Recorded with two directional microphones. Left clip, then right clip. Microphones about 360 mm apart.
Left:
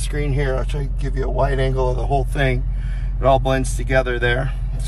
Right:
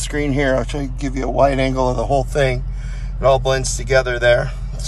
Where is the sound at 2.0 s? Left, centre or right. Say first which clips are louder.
Right 4 dB; right.